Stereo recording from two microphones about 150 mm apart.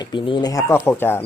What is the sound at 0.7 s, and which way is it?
Speech, 15° left (ahead or behind).